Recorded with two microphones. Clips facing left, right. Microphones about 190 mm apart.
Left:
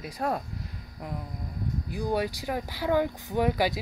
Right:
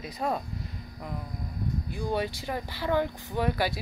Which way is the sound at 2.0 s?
10° left (ahead or behind).